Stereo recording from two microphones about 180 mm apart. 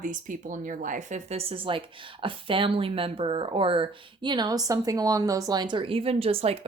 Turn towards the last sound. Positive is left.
turn(degrees=-35)  # may be behind; listen again after turning